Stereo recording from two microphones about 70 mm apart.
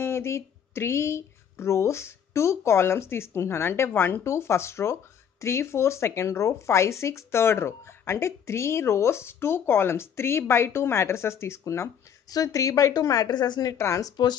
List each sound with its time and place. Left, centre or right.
0.0 s speech: left
12.3 s speech: left
13.3 s a woman's voice: left
13.7 s speech: left
14.0 s speech: left